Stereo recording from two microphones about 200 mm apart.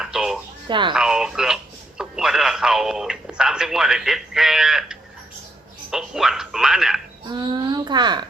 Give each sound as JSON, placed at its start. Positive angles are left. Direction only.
{"t": 0.0, "sound": "a sound", "side_deg": -5}
{"t": 0.7, "sound": "a child's voice", "side_deg": -25}
{"t": 0.9, "sound": "speech", "side_deg": -5}
{"t": 7.3, "sound": "a child's voice", "side_deg": -20}